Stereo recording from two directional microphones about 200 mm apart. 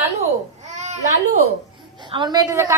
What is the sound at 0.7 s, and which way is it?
Speech, 35° right (ahead or behind).